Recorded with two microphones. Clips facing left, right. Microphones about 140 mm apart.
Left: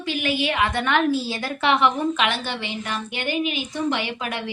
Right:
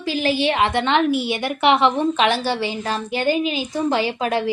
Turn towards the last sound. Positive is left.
turn(degrees=-35)  # may be behind; listen again after turning